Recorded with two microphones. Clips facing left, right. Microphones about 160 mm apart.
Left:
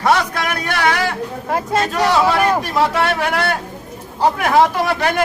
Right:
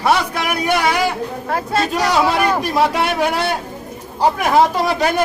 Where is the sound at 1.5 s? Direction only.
15° left (ahead or behind).